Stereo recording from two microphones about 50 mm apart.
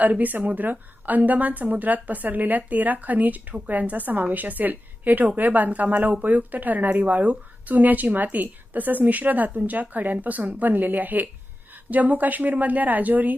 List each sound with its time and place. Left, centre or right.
0.0 s speech: right